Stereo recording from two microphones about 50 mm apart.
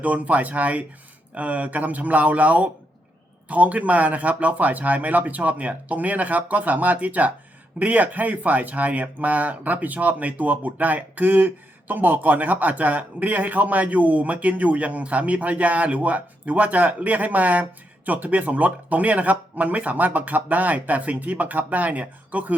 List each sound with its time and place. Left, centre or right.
0.0 s speech: right